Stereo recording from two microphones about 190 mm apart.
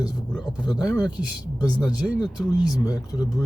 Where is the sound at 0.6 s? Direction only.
20° left (ahead or behind).